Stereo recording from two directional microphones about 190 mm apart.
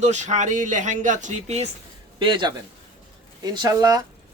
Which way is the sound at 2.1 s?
25° right (ahead or behind).